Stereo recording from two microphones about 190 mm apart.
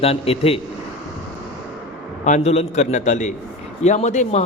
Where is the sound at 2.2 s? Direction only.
35° left (ahead or behind).